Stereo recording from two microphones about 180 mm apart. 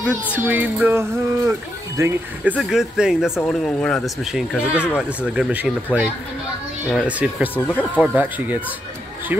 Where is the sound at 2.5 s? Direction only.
Centre (ahead or behind).